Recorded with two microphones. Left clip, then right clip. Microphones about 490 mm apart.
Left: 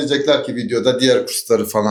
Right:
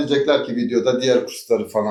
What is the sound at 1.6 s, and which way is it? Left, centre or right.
Speech, left.